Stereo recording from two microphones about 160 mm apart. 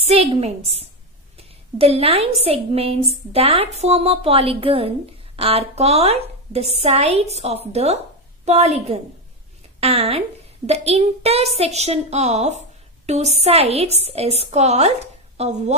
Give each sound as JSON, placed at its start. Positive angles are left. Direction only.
{"t": 0.0, "sound": "a woman's voice", "side_deg": -40}